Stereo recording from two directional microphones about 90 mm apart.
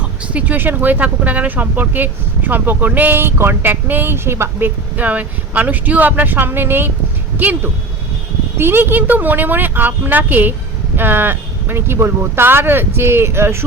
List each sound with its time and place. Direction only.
0.3 s speech: 20° right (ahead or behind)